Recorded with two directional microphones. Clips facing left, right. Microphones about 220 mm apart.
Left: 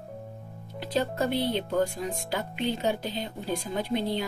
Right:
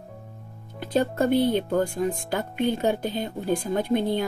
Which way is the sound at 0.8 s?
50° right (ahead or behind).